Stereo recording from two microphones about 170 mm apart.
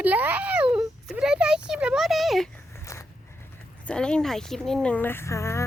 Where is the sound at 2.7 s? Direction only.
15° left (ahead or behind).